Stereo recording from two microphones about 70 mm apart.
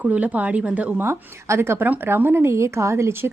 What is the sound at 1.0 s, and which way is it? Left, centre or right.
A woman's voice, right.